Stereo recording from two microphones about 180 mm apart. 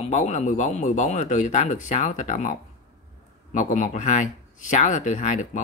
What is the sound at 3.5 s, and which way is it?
Speech, 45° left (ahead or behind).